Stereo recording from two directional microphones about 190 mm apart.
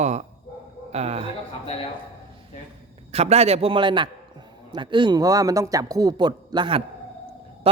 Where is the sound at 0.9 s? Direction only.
35° right (ahead or behind).